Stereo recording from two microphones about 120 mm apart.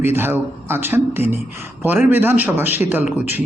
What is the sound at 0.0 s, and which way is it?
A man's voice, 20° right (ahead or behind).